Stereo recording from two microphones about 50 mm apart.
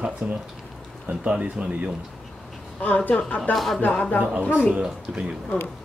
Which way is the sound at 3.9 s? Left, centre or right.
Left.